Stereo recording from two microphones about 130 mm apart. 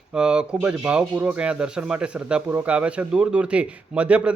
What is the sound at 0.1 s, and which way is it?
Speech, 5° right (ahead or behind).